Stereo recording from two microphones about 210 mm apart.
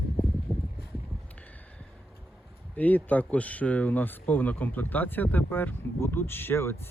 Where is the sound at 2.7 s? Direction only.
10° left (ahead or behind).